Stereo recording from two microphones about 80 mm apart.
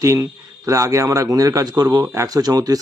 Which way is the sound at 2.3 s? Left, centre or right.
Right.